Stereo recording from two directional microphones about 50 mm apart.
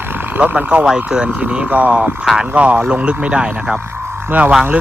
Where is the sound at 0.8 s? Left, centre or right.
Centre.